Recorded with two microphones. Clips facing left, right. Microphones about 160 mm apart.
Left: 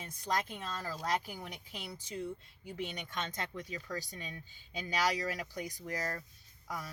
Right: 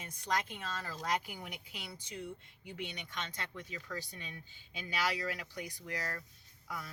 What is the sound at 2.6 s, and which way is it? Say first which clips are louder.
Speech: left 3 dB; 40° left (ahead or behind).